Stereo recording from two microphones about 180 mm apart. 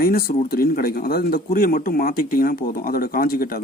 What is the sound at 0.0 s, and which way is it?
Speech, 55° left (ahead or behind).